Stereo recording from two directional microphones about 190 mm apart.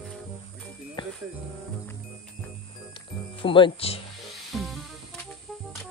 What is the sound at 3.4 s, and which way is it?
Speech, 25° left (ahead or behind).